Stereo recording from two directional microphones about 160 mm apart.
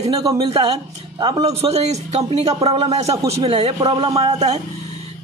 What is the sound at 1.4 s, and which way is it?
Speech, 40° right (ahead or behind).